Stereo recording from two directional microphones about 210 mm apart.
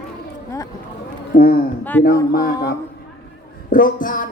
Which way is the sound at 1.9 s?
10° left (ahead or behind).